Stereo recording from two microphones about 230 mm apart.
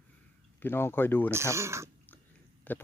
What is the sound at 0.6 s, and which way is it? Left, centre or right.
Speech, centre.